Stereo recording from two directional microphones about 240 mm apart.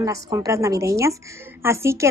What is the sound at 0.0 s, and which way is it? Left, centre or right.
Speech, centre.